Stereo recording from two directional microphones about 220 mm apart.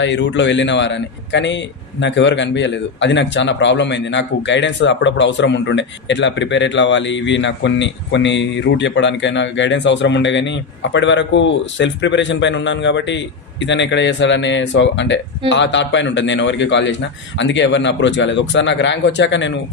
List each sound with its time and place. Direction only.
0.0 s a man's voice: 55° left (ahead or behind)